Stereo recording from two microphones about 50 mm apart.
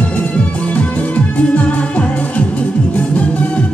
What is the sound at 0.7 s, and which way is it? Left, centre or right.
Music, left.